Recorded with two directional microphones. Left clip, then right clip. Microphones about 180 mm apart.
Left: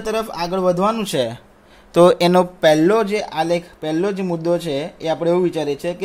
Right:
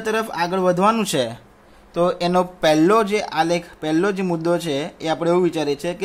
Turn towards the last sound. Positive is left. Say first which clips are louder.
# left 1 dB
turn(degrees=0)  # may be behind; listen again after turning